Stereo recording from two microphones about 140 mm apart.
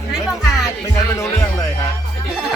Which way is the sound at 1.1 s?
20° left (ahead or behind).